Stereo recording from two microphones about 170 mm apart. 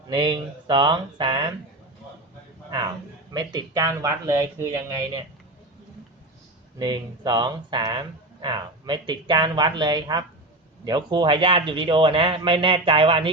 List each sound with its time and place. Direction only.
0.1 s speech: 30° right (ahead or behind)
2.6 s a man's voice: 25° right (ahead or behind)
6.7 s speech: 25° right (ahead or behind)